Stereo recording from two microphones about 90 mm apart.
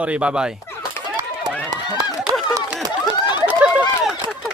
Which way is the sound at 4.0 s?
5° right (ahead or behind).